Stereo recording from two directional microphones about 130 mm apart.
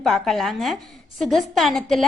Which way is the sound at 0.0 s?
Centre (ahead or behind).